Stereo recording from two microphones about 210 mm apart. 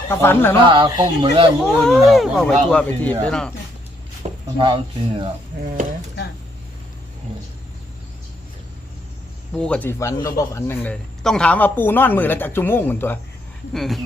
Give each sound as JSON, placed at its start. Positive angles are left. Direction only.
{"t": 0.1, "sound": "speech", "side_deg": 10}
{"t": 0.5, "sound": "speech", "side_deg": -25}
{"t": 1.6, "sound": "speech", "side_deg": 0}
{"t": 4.2, "sound": "speech", "side_deg": -25}
{"t": 9.6, "sound": "speech", "side_deg": 5}